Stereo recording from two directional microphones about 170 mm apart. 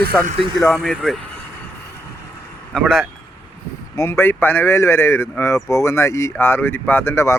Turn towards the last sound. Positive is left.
turn(degrees=15)  # may be behind; listen again after turning